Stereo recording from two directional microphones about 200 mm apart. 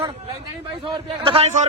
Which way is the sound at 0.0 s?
25° right (ahead or behind).